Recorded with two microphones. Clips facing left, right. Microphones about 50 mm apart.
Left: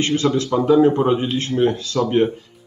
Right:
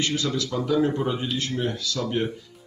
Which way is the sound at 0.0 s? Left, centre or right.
Left.